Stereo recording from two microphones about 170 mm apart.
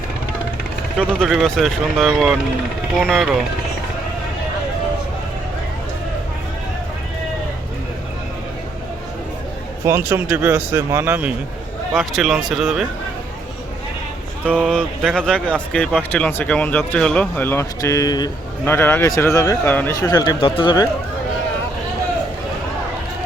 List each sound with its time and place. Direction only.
0.9 s speech: 5° left (ahead or behind)
9.8 s speech: 15° right (ahead or behind)
14.4 s speech: 5° left (ahead or behind); by 18.3 s 25° left (ahead or behind)
18.6 s speech: 10° left (ahead or behind); by 20.8 s 30° left (ahead or behind)